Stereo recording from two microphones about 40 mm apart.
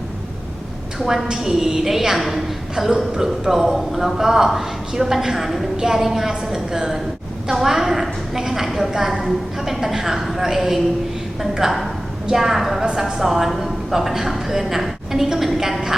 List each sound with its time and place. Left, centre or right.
0.9 s a woman's voice: centre
12.8 s a woman's voice: centre